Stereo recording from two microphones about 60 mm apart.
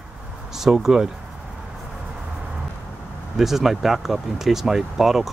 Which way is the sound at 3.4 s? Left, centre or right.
Centre.